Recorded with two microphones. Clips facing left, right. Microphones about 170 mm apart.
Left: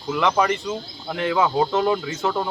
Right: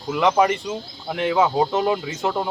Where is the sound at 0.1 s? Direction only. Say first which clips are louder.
Right 2 dB; 20° right (ahead or behind).